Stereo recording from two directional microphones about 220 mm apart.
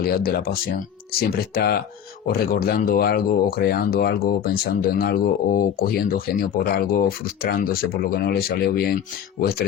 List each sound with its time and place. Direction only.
0.0 s speech: 45° left (ahead or behind)